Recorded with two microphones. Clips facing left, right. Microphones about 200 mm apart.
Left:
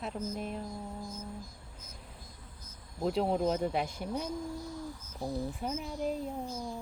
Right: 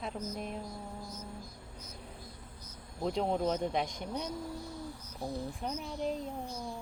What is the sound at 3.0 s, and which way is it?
Speech, 5° left (ahead or behind).